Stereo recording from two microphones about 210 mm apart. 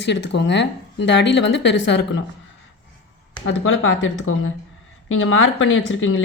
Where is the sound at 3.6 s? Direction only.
70° left (ahead or behind).